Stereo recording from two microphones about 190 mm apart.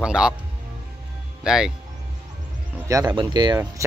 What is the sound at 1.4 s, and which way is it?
Speech, 5° right (ahead or behind).